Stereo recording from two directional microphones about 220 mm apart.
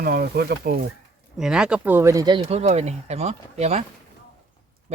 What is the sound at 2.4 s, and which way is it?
Speech, 30° right (ahead or behind).